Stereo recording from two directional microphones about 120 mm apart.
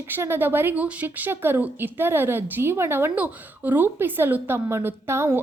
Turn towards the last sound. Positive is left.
turn(degrees=-20)  # may be behind; listen again after turning